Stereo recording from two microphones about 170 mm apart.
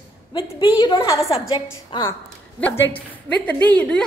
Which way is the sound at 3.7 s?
5° left (ahead or behind).